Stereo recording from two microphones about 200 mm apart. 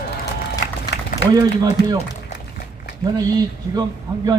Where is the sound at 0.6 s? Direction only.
60° left (ahead or behind).